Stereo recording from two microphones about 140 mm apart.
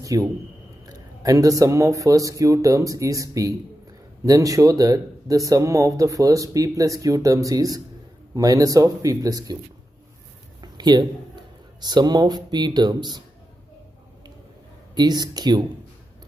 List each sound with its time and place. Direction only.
0.0 s a man's voice: 25° right (ahead or behind)
10.6 s a sound: 30° right (ahead or behind)
11.8 s speech: 30° right (ahead or behind)
15.0 s speech: 30° right (ahead or behind)